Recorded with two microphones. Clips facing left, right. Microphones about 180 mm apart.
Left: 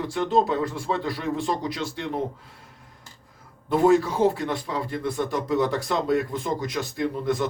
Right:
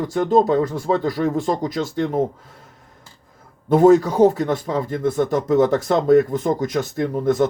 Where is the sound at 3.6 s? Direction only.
45° right (ahead or behind).